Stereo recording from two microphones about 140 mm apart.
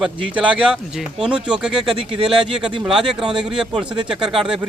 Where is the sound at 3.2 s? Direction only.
35° right (ahead or behind).